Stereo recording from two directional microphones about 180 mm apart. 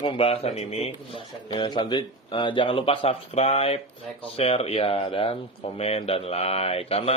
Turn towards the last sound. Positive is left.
turn(degrees=35)  # may be behind; listen again after turning